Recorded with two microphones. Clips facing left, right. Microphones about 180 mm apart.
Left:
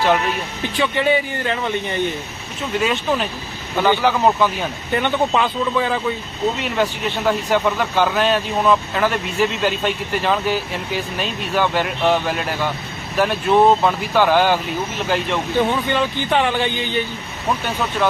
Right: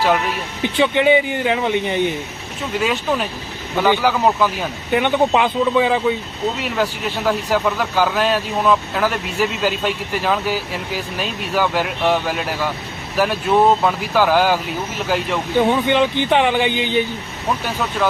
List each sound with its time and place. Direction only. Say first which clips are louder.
0.6 s speech: right 4 dB; 20° right (ahead or behind)
2.8 s speech: even; 5° right (ahead or behind)
7.3 s speech: even; centre (ahead or behind)
15.5 s speech: right 4 dB; 15° right (ahead or behind)